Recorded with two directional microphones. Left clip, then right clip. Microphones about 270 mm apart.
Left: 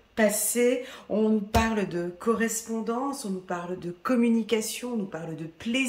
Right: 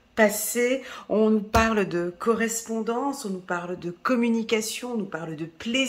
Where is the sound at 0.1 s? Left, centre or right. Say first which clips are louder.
Right 3 dB; centre.